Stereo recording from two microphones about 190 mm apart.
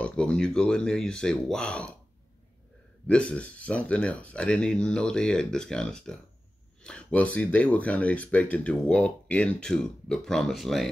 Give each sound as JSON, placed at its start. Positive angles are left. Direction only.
{"t": 0.0, "sound": "speech", "side_deg": 5}
{"t": 3.1, "sound": "speech", "side_deg": 5}